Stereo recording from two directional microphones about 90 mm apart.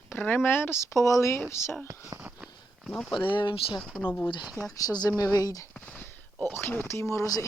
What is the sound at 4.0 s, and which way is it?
Speech, 25° left (ahead or behind).